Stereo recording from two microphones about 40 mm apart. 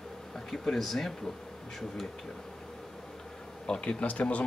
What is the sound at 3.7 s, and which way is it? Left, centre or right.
Speech, left.